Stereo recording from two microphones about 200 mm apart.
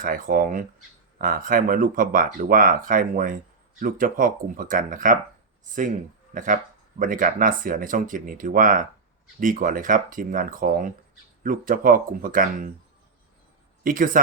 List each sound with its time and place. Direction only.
0.0 s speech: 45° right (ahead or behind)
6.3 s speech: 40° right (ahead or behind)
13.8 s speech: 40° right (ahead or behind)